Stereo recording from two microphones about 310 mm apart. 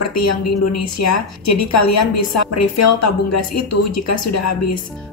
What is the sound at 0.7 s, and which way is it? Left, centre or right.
A woman's voice, left.